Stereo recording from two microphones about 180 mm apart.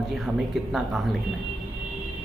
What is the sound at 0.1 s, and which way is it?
A woman's voice, centre (ahead or behind).